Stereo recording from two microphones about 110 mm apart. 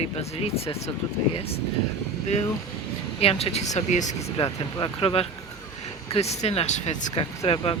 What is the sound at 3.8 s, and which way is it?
Speech, 90° left.